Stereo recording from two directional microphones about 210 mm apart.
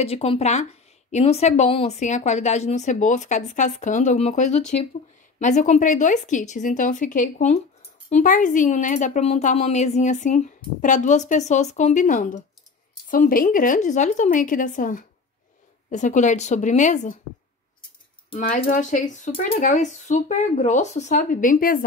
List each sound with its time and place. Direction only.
0.0 s speech: 30° left (ahead or behind)
18.3 s speech: 40° left (ahead or behind)